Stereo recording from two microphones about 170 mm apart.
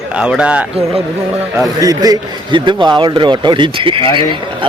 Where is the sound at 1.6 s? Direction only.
20° right (ahead or behind).